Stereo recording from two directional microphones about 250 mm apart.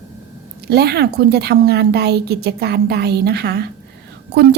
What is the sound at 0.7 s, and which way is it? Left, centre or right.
A woman's voice, right.